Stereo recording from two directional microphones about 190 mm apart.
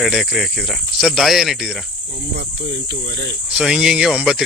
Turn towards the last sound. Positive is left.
turn(degrees=-5)  # may be behind; listen again after turning